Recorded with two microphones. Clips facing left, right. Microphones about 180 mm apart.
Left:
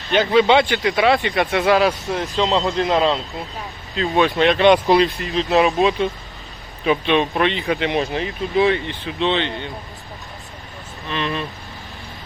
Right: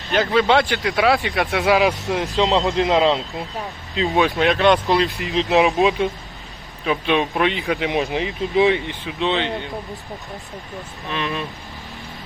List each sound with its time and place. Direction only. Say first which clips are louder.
0.1 s speech: left 2 dB; centre (ahead or behind)
1.9 s speech: right 1 dB; 20° right (ahead or behind)
4.1 s speech: left 2 dB; 5° right (ahead or behind)
5.2 s speech: even; 20° right (ahead or behind)
6.8 s speech: left 2 dB; centre (ahead or behind)
8.1 s speech: right 1 dB; 15° right (ahead or behind)
9.0 s speech: left 1 dB; 5° right (ahead or behind)
11.1 s speech: left 1 dB; 5° right (ahead or behind)